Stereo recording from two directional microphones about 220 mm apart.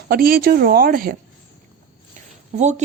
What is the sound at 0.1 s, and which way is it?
A woman's voice, 40° right (ahead or behind).